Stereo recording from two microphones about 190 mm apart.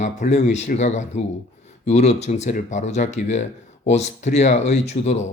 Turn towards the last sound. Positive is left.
turn(degrees=35)  # may be behind; listen again after turning